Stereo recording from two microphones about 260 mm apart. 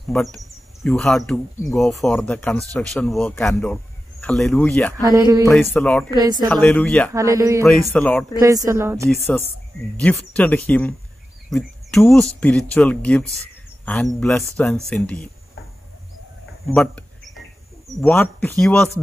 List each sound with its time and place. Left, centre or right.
0.1 s speech: centre
5.1 s speech: centre
5.5 s speech: centre
6.0 s speech: centre
6.5 s speech: centre
7.2 s speech: centre
7.6 s speech: centre
8.4 s speech: centre
9.2 s speech: centre
16.6 s a sound: centre
17.8 s speech: centre